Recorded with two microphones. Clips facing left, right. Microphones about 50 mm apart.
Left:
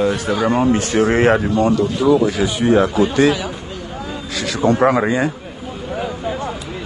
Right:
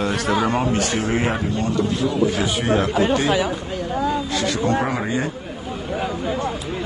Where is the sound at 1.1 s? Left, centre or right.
Left.